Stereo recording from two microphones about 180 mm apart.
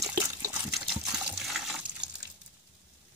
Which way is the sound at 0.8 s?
5° right (ahead or behind).